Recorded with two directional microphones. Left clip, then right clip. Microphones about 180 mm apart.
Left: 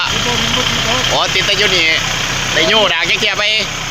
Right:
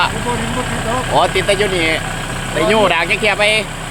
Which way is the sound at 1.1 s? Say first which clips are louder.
Right 4 dB; 20° right (ahead or behind).